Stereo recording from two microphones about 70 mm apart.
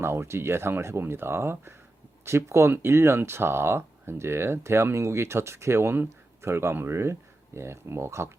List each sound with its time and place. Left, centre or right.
0.0 s speech: right